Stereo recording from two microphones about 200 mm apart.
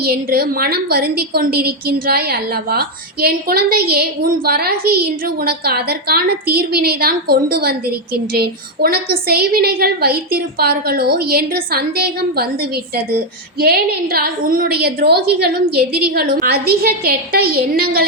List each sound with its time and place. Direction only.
0.0 s a woman's voice: 50° right (ahead or behind)
13.6 s a woman's voice: 50° right (ahead or behind)